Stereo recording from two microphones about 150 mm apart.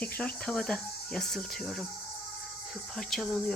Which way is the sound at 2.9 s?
Centre (ahead or behind).